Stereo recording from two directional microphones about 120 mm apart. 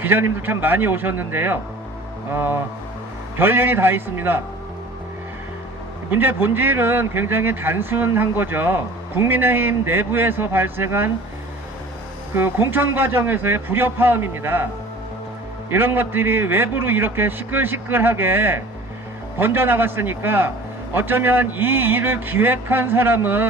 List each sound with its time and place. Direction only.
0.0 s a man's voice: 15° right (ahead or behind)
6.1 s a man's voice: 15° right (ahead or behind)
12.4 s a man's voice: 15° right (ahead or behind)
15.7 s a man's voice: 15° right (ahead or behind)